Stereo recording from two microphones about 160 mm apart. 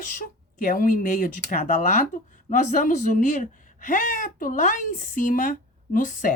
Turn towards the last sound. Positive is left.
turn(degrees=55)  # may be behind; listen again after turning